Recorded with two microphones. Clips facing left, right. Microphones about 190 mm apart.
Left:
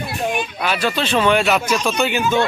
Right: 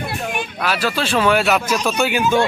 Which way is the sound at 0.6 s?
5° right (ahead or behind).